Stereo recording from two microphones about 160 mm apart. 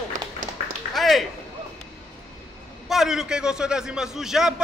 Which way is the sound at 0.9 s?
Centre (ahead or behind).